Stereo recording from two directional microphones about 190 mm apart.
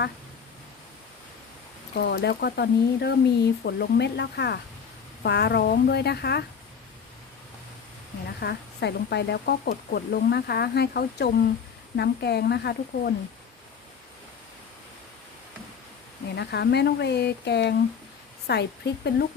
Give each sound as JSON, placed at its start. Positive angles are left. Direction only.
{"t": 2.0, "sound": "speech", "side_deg": 65}
{"t": 8.4, "sound": "speech", "side_deg": 60}
{"t": 16.3, "sound": "speech", "side_deg": 60}